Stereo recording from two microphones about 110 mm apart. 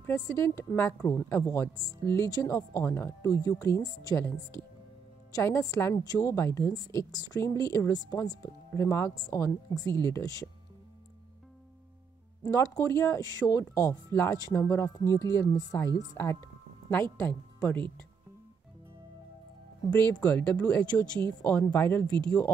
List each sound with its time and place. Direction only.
0.0 s a woman's voice: 25° left (ahead or behind)
8.4 s speech: 25° left (ahead or behind)
12.4 s a woman's voice: 30° left (ahead or behind)
20.2 s speech: 10° left (ahead or behind)
22.2 s speech: 10° left (ahead or behind)